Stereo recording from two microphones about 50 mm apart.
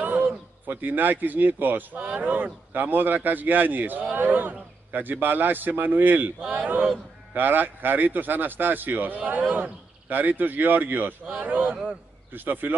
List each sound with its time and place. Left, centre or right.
0.0 s a man's voice: right